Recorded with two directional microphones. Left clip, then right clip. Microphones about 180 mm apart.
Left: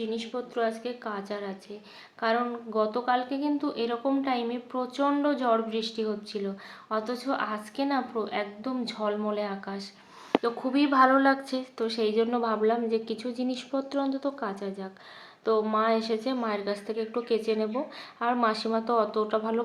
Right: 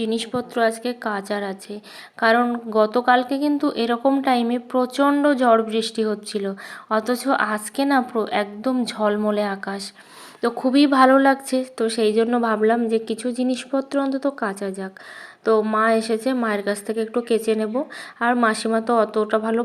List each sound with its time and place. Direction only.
0.0 s speech: 55° right (ahead or behind); by 19.6 s 35° right (ahead or behind)